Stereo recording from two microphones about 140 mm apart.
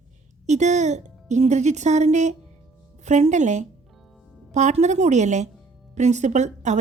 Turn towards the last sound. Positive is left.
turn(degrees=-55)  # may be behind; listen again after turning